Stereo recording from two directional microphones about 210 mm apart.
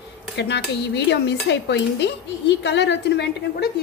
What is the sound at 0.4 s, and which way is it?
Speech, 55° left (ahead or behind).